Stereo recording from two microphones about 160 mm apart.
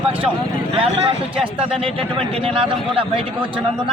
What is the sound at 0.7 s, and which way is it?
Speech, 35° right (ahead or behind).